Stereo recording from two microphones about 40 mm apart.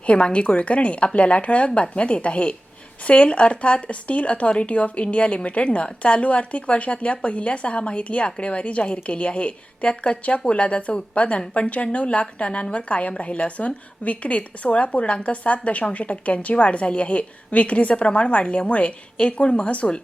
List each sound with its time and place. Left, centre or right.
0.0 s a woman's voice: left